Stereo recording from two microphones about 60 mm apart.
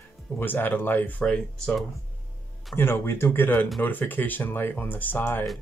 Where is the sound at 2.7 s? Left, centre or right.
Left.